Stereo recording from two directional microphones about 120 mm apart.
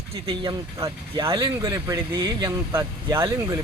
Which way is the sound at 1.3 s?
40° right (ahead or behind).